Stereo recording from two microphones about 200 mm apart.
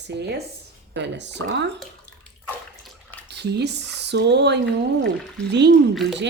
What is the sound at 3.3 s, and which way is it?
Speech, 55° right (ahead or behind).